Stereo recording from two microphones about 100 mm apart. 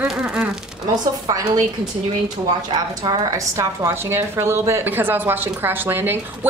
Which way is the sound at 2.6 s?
50° right (ahead or behind).